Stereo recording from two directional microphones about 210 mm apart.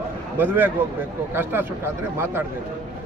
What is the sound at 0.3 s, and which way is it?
A man's voice, 10° right (ahead or behind).